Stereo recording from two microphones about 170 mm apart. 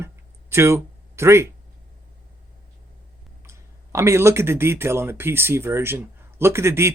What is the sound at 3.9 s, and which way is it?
Speech, 15° right (ahead or behind).